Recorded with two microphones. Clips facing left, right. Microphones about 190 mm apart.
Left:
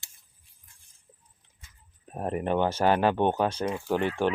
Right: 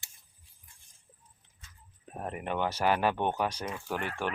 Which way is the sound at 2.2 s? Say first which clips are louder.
Left 7 dB; 35° left (ahead or behind).